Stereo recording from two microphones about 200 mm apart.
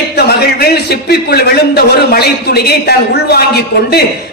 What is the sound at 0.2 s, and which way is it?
A man's voice, 55° left (ahead or behind).